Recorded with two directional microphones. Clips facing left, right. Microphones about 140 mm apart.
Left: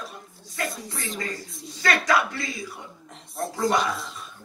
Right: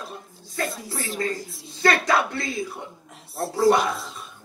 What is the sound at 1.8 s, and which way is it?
Speech, 25° right (ahead or behind).